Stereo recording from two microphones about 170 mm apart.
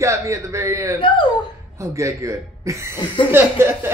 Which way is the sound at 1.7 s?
20° right (ahead or behind).